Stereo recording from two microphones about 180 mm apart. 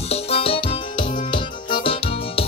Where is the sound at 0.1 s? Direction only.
30° left (ahead or behind).